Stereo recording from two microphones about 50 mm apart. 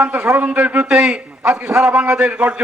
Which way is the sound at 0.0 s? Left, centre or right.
Right.